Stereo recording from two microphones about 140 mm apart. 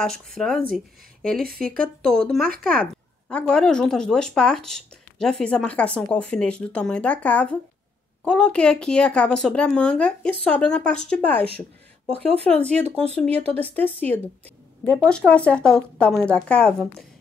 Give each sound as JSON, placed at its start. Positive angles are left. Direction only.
{"t": 0.0, "sound": "a woman's voice", "side_deg": 5}
{"t": 1.7, "sound": "speech", "side_deg": -90}
{"t": 2.0, "sound": "a woman's voice", "side_deg": 5}
{"t": 12.4, "sound": "speech", "side_deg": 5}